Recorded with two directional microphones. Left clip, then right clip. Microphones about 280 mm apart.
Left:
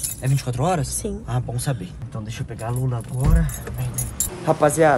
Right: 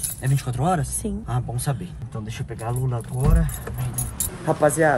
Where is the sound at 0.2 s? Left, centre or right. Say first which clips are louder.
Left 2 dB; centre.